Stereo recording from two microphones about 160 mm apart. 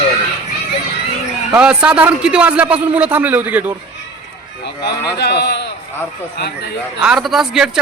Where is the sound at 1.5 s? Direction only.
5° right (ahead or behind).